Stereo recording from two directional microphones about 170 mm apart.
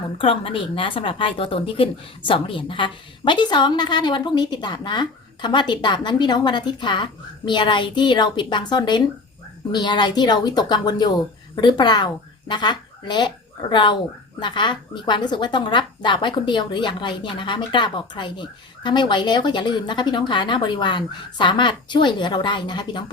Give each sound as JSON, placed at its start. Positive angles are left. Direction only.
{"t": 0.2, "sound": "speech", "side_deg": 30}